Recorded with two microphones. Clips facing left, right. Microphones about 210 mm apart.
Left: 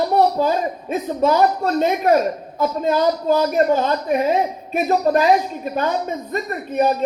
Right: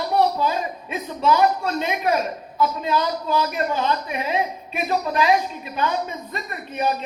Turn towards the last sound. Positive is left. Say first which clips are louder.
# left 6 dB
turn(degrees=40)  # may be behind; listen again after turning